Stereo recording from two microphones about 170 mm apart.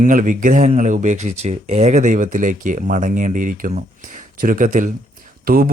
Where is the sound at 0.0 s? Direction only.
50° right (ahead or behind).